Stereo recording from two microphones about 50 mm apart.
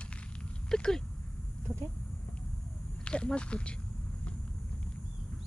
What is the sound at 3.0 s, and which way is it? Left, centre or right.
Speech, left.